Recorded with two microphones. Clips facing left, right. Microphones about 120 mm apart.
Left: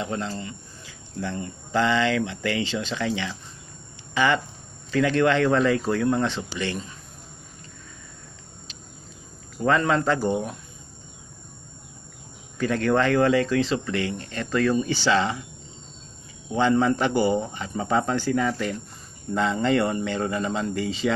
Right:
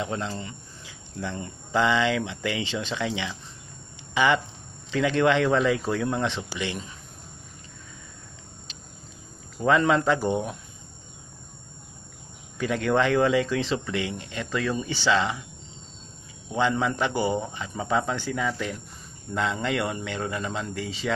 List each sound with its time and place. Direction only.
0.1 s speech: 20° right (ahead or behind)
9.6 s speech: 15° right (ahead or behind)
12.5 s speech: 15° right (ahead or behind)
16.5 s speech: 5° right (ahead or behind)